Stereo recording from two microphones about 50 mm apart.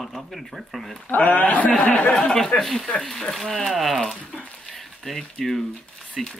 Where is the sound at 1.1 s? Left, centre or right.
Left.